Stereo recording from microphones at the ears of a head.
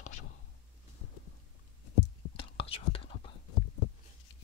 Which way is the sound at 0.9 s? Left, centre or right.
Left.